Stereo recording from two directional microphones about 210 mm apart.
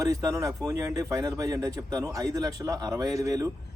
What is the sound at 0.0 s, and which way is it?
Speech, 15° right (ahead or behind).